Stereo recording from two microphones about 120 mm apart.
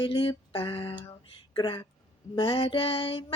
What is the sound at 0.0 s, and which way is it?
Speech, 40° left (ahead or behind).